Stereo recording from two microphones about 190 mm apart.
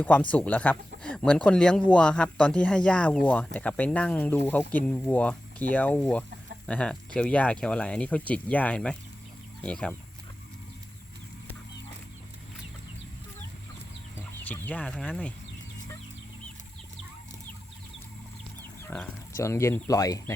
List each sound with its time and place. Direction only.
0.0 s speech: 5° left (ahead or behind)
14.2 s speech: 10° left (ahead or behind)
18.9 s speech: 15° left (ahead or behind)